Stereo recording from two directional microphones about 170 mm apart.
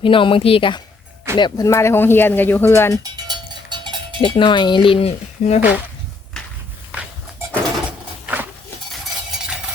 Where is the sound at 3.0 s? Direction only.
25° right (ahead or behind).